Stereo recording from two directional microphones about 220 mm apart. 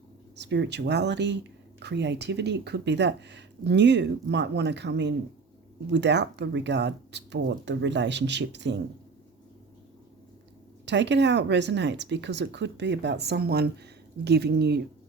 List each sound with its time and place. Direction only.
0.3 s speech: 50° right (ahead or behind)
10.8 s speech: 55° right (ahead or behind)